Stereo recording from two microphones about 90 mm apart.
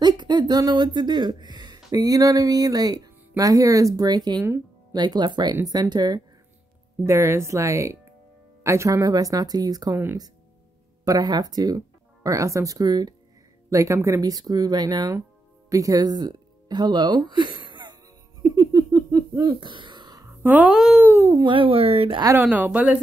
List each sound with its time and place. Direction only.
0.0 s speech: 55° right (ahead or behind)
7.1 s speech: 30° right (ahead or behind)
11.1 s speech: 50° right (ahead or behind)
13.7 s speech: 35° right (ahead or behind); by 17.9 s 60° right (ahead or behind)
18.6 s a sound: 40° right (ahead or behind)
19.6 s throat clearing: 60° right (ahead or behind)
20.4 s speech: 20° right (ahead or behind)
20.7 s speech: 5° right (ahead or behind)
21.0 s a sound: 25° right (ahead or behind)
21.5 s speech: 80° right
22.3 s speech: 20° right (ahead or behind)